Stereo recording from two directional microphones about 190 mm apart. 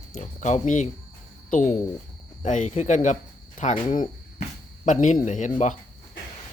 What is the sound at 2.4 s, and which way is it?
Speech, 40° left (ahead or behind).